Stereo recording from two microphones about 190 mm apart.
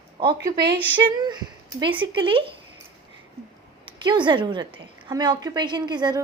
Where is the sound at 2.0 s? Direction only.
25° right (ahead or behind).